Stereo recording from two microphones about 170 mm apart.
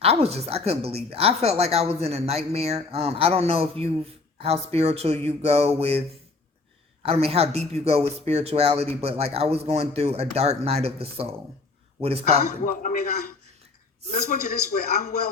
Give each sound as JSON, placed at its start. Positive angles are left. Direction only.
{"t": 0.0, "sound": "a woman's voice", "side_deg": -35}
{"t": 7.0, "sound": "a woman's voice", "side_deg": -35}
{"t": 12.4, "sound": "a man's voice", "side_deg": 55}
{"t": 14.1, "sound": "speech", "side_deg": 45}